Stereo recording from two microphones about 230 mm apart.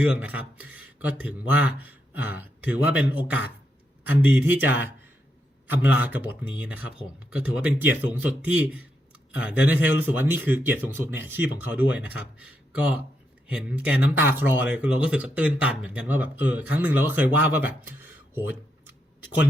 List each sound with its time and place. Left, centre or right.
0.0 s speech: centre